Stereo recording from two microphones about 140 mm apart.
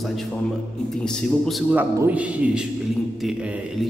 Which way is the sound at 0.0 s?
Centre (ahead or behind).